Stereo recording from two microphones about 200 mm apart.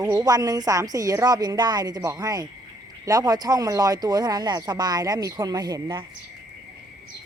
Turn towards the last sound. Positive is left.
turn(degrees=-20)  # may be behind; listen again after turning